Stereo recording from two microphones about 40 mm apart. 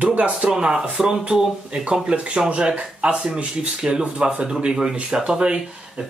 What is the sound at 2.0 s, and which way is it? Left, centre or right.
Speech, right.